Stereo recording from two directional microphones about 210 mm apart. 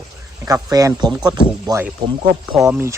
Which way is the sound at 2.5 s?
Centre (ahead or behind).